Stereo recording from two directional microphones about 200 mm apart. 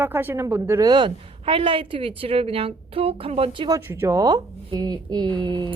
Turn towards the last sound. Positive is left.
turn(degrees=-20)  # may be behind; listen again after turning